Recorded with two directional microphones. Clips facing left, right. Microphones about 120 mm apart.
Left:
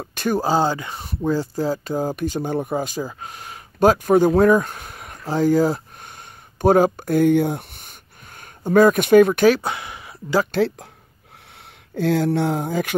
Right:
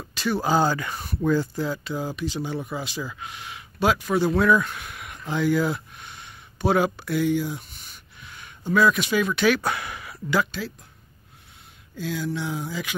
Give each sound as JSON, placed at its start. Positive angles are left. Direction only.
{"t": 0.0, "sound": "speech", "side_deg": 50}
{"t": 0.4, "sound": "speech", "side_deg": 30}
{"t": 9.5, "sound": "a sound", "side_deg": 25}
{"t": 10.5, "sound": "speech", "side_deg": 65}